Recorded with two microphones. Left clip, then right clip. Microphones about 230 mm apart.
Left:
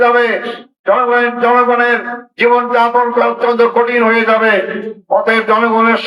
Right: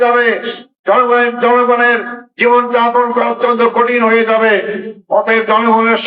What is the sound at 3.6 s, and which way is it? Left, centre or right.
A man's voice, left.